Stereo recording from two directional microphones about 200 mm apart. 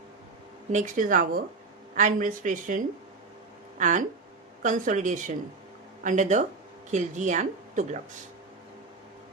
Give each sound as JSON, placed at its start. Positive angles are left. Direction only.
{"t": 0.7, "sound": "a woman's voice", "side_deg": -40}